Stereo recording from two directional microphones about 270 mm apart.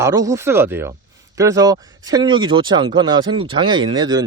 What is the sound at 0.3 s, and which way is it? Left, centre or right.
Speech, centre.